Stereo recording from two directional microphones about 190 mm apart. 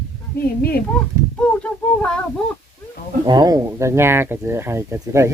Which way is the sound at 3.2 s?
20° right (ahead or behind).